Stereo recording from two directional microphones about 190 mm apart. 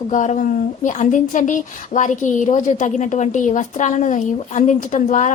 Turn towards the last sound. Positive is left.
turn(degrees=40)  # may be behind; listen again after turning